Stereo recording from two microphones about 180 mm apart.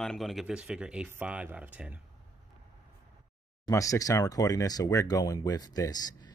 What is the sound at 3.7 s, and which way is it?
Speech, 20° left (ahead or behind).